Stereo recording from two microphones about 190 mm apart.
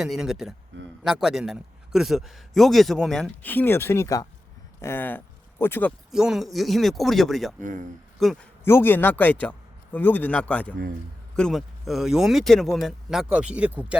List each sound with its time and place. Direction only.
0.0 s a man's voice: centre (ahead or behind)
6.1 s a man's voice: 5° right (ahead or behind)
7.6 s speech: 45° right (ahead or behind)
8.2 s a man's voice: centre (ahead or behind)
8.6 s a man's voice: 10° left (ahead or behind); by 13.9 s 5° right (ahead or behind)